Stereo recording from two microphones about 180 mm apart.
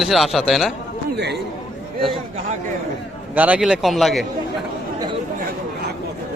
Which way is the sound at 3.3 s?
10° right (ahead or behind).